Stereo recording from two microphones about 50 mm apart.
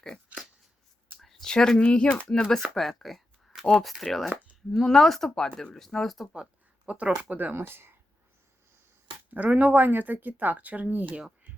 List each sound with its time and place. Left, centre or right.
1.2 s speech: centre
2.5 s speech: centre
6.3 s a sound: right
7.2 s speech: right
7.5 s speech: right
9.3 s speech: right